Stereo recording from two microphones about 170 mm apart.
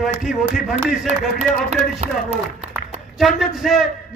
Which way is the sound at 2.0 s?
40° right (ahead or behind).